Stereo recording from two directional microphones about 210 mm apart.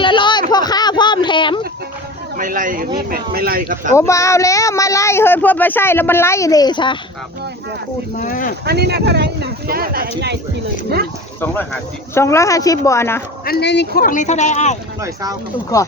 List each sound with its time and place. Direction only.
0.0 s a sound: 25° left (ahead or behind)
2.4 s speech: 40° right (ahead or behind)
3.9 s speech: 15° left (ahead or behind)
8.2 s speech: 40° left (ahead or behind)
8.6 s speech: 50° right (ahead or behind)
11.3 s speech: 10° left (ahead or behind)
13.4 s speech: 50° left (ahead or behind); by 14.8 s 35° left (ahead or behind)
15.0 s speech: 15° right (ahead or behind)